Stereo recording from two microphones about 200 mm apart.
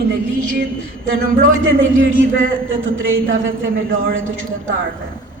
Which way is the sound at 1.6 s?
75° right (ahead or behind).